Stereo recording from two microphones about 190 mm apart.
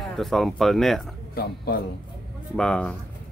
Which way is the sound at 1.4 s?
55° left (ahead or behind).